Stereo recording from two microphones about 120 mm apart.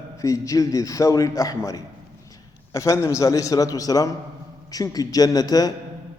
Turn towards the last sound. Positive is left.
turn(degrees=30)  # may be behind; listen again after turning